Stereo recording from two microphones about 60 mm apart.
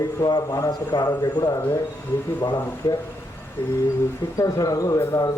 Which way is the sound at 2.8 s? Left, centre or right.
Left.